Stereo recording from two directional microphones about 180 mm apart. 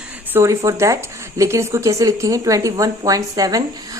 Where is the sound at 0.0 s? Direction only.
10° right (ahead or behind).